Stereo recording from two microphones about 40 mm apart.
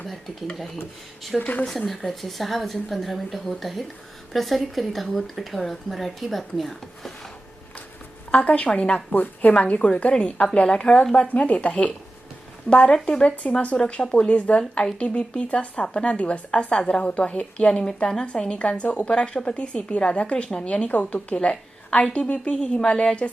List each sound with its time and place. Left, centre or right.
1.4 s a woman's voice: left
2.0 s speech: centre
8.3 s a woman's voice: left
9.1 s a woman's voice: left
11.1 s a woman's voice: left
12.7 s a woman's voice: left
18.8 s a woman's voice: left